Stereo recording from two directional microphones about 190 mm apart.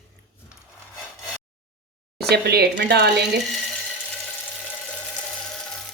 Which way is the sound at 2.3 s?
60° right (ahead or behind).